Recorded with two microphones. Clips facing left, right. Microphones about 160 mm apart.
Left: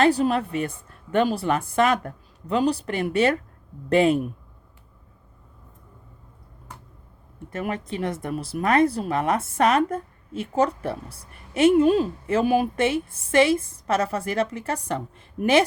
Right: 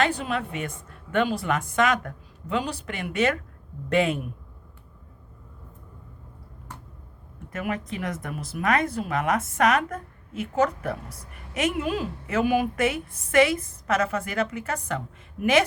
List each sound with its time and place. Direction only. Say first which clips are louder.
0.0 s a woman's voice: left 6 dB; 35° left (ahead or behind)
7.5 s a woman's voice: left 1 dB; 30° left (ahead or behind)